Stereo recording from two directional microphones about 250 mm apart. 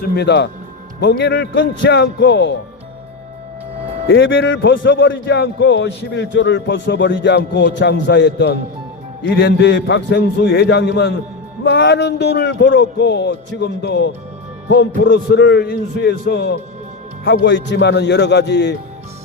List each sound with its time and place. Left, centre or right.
0.0 s a man's voice: left
4.1 s a man's voice: left